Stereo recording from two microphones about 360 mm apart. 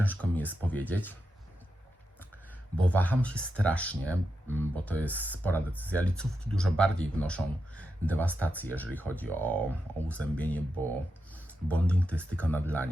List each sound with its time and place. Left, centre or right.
0.0 s speech: centre
2.7 s speech: centre
11.9 s speech: centre